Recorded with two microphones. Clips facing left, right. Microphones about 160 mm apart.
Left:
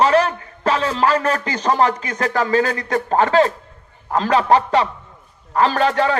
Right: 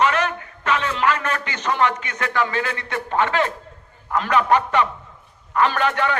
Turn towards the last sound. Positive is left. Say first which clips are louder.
# left 4 dB
turn(degrees=30)  # may be behind; listen again after turning